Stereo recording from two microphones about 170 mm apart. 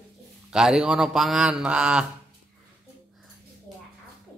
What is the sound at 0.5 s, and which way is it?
Speech, 5° right (ahead or behind).